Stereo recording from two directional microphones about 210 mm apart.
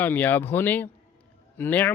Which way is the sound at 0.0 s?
10° left (ahead or behind).